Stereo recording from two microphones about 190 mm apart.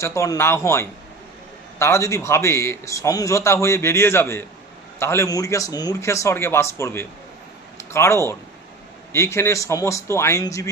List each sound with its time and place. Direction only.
0.0 s a man's voice: 15° left (ahead or behind)